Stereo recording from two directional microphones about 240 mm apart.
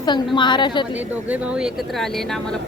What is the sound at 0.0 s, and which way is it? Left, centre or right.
Speech, centre.